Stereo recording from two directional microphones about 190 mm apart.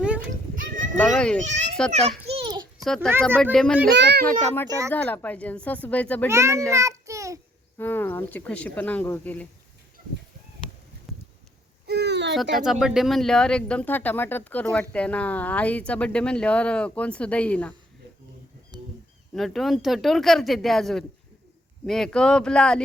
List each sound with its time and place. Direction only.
0.0 s children playing: 5° right (ahead or behind)
0.5 s livestock: 45° right (ahead or behind)
0.9 s speech: 5° left (ahead or behind)
1.9 s babbling: 30° right (ahead or behind)
2.7 s a child's voice: centre (ahead or behind)
3.8 s a child's voice: 60° right (ahead or behind)
4.9 s speech: 10° left (ahead or behind)
6.2 s a child's voice: 15° right (ahead or behind)
7.8 s speech: 10° left (ahead or behind)
11.1 s a sound: centre (ahead or behind)
11.9 s a sound: 60° right (ahead or behind)
12.8 s speech: centre (ahead or behind)
19.3 s speech: centre (ahead or behind)